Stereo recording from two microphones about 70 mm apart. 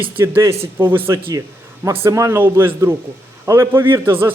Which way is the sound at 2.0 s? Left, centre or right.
Right.